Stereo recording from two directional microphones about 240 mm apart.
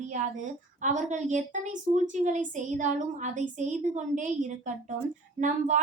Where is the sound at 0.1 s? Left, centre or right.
Right.